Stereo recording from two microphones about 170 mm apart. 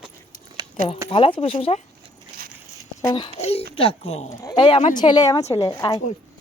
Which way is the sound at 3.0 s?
25° left (ahead or behind).